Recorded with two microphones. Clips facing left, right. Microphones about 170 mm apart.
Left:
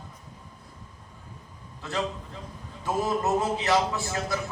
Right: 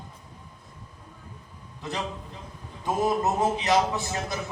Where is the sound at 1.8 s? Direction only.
15° right (ahead or behind).